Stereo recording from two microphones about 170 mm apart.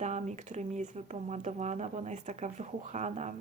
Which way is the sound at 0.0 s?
45° right (ahead or behind).